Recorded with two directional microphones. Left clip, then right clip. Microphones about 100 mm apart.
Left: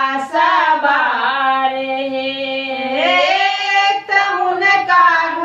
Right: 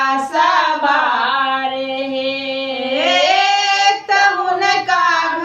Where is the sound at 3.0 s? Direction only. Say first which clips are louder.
Even; 20° right (ahead or behind).